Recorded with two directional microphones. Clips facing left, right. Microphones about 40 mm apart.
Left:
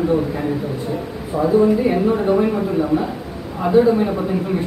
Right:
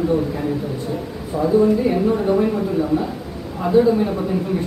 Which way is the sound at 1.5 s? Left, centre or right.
Left.